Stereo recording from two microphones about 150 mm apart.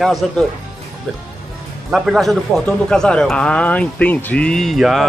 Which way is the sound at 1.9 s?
Centre (ahead or behind).